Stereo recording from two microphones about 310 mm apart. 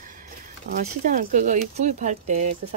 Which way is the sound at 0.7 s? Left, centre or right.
Right.